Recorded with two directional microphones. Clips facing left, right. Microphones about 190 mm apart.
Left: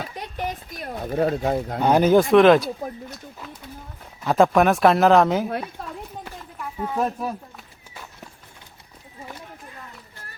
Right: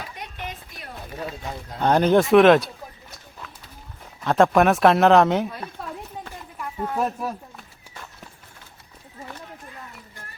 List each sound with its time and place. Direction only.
0.1 s a sound: 35° left (ahead or behind)
1.1 s speech: 55° left (ahead or behind)
1.8 s speech: 10° left (ahead or behind)
4.2 s speech: 5° left (ahead or behind)
6.6 s speech: centre (ahead or behind)